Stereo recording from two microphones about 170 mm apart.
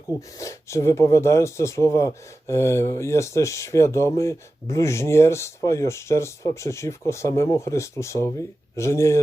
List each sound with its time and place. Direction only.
0.3 s speech: 20° left (ahead or behind)